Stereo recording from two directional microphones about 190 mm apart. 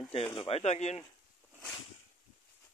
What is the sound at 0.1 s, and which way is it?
Speech, 25° left (ahead or behind).